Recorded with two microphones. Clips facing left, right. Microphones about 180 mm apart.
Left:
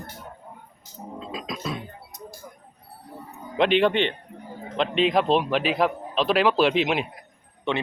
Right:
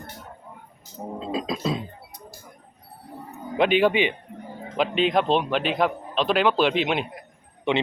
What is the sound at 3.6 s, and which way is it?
Speech, 5° right (ahead or behind).